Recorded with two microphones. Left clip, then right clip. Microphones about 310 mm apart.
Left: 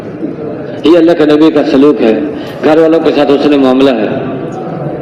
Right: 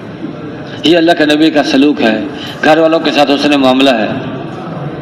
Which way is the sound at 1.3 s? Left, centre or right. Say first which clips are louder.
Left 3 dB; right.